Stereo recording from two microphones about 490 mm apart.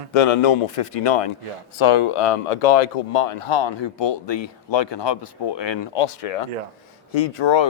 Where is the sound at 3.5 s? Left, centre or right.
Left.